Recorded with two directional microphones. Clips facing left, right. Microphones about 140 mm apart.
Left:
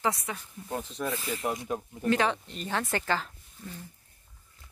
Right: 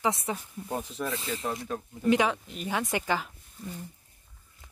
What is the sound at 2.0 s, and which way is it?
Speech, 10° right (ahead or behind).